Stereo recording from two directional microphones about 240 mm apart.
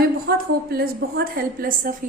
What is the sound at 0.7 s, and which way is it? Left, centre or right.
A woman's voice, right.